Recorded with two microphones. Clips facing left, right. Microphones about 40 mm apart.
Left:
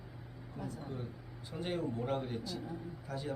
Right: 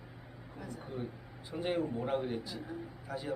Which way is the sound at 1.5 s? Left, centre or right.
Centre.